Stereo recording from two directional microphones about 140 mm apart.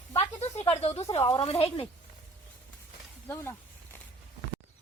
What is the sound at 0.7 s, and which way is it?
Speech, 50° left (ahead or behind).